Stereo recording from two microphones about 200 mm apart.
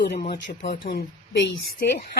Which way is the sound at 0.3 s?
60° left (ahead or behind).